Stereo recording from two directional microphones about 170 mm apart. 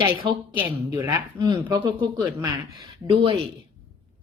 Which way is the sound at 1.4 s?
25° right (ahead or behind).